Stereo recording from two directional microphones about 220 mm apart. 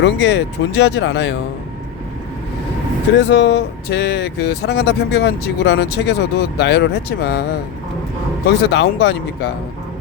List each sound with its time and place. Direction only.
0.0 s speech: 55° left (ahead or behind)
3.2 s speech: 55° left (ahead or behind)
8.4 s speech: 50° left (ahead or behind)